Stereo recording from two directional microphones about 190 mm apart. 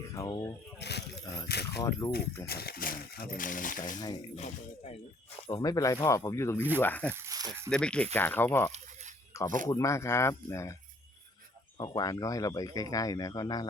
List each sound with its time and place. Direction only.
0.2 s speech: 20° left (ahead or behind)
0.8 s a sound: 60° left (ahead or behind)
1.5 s speech: 60° left (ahead or behind)
1.8 s speech: 20° left (ahead or behind)
2.5 s speech: 55° left (ahead or behind); by 4.9 s 35° left (ahead or behind)
5.5 s speech: 20° left (ahead or behind)
6.6 s speech: 10° right (ahead or behind)
6.8 s speech: 10° left (ahead or behind)
7.1 s speech: 15° right (ahead or behind)
7.7 s speech: 5° left (ahead or behind)
11.8 s speech: 25° left (ahead or behind)